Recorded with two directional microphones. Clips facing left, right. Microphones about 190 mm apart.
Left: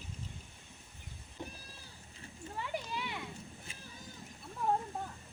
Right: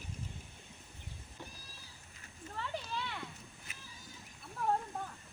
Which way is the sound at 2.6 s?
15° left (ahead or behind).